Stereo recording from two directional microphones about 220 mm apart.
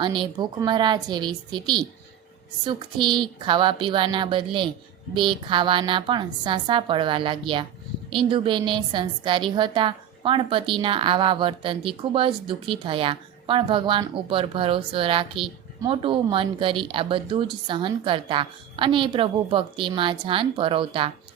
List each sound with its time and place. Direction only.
0.0 s a woman's voice: 20° right (ahead or behind)